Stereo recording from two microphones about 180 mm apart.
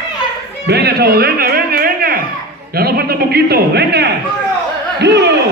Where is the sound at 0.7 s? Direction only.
65° right (ahead or behind).